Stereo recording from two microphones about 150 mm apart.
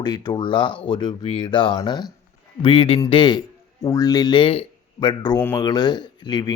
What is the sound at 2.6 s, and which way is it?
Speech, 40° left (ahead or behind).